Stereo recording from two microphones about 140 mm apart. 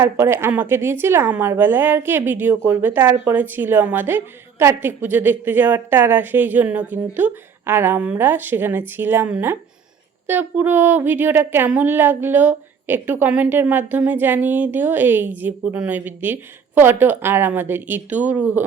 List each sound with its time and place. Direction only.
0.0 s speech: 15° right (ahead or behind)